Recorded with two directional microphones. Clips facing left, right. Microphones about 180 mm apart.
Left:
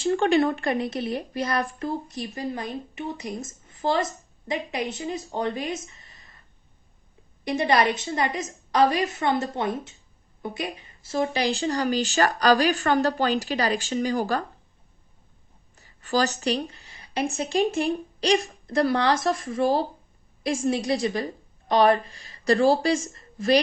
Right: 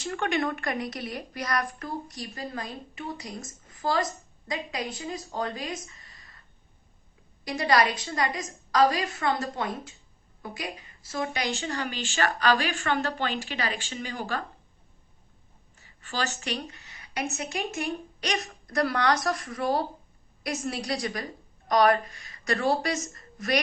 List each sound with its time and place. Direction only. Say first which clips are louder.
0.0 s speech: left 8 dB; 30° left (ahead or behind)
7.4 s speech: left 3 dB; 25° left (ahead or behind)
15.7 s speech: left 10 dB; 40° left (ahead or behind)